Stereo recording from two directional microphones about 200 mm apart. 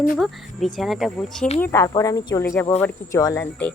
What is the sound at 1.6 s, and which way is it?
Speech, 15° left (ahead or behind).